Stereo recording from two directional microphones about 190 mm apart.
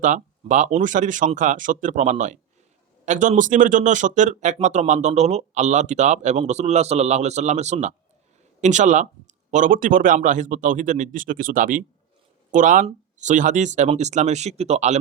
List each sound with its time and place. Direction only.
0.0 s speech: 40° right (ahead or behind)